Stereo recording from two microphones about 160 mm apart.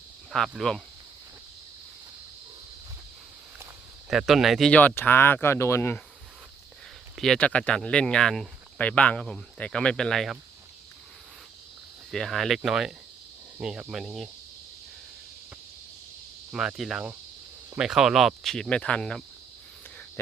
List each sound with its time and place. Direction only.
0.3 s speech: centre (ahead or behind)
4.1 s speech: centre (ahead or behind); by 6.0 s 15° left (ahead or behind)
7.2 s speech: 5° left (ahead or behind)
12.1 s speech: centre (ahead or behind)
16.5 s speech: 5° right (ahead or behind)